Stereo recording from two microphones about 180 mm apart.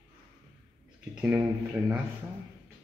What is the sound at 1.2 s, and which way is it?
Speech, 5° right (ahead or behind).